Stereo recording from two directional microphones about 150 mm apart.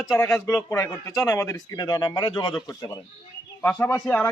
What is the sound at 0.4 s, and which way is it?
Speech, 20° left (ahead or behind).